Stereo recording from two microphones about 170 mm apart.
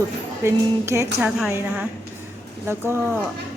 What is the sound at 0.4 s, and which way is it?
Speech, 15° right (ahead or behind).